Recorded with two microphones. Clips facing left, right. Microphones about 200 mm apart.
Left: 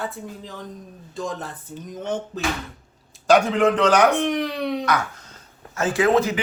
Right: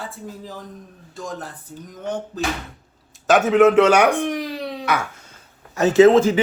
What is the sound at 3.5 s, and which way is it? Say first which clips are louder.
Speech: right 5 dB; 5° right (ahead or behind).